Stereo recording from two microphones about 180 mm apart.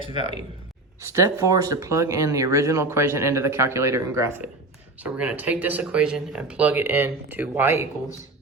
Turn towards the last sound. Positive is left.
turn(degrees=-15)  # may be behind; listen again after turning